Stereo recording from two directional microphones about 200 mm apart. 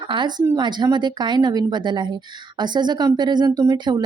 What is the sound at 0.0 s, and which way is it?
Speech, 25° right (ahead or behind).